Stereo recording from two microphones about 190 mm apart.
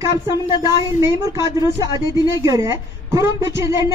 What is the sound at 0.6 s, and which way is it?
Speech, 15° right (ahead or behind).